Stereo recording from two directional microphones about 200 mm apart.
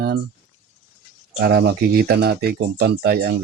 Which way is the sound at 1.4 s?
55° right (ahead or behind).